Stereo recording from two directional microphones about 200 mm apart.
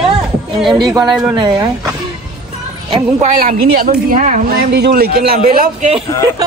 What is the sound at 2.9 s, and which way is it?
A woman's voice, 35° right (ahead or behind).